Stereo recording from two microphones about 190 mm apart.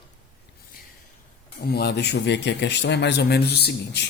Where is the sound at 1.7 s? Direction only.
55° left (ahead or behind).